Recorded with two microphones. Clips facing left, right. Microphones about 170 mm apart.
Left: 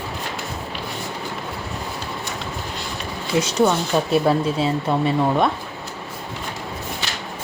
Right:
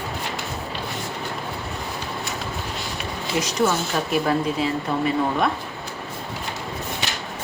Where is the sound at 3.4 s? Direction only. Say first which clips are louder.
Left 3 dB; 30° left (ahead or behind).